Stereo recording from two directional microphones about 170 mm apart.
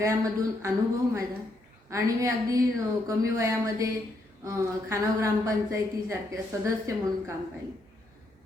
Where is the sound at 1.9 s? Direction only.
20° right (ahead or behind).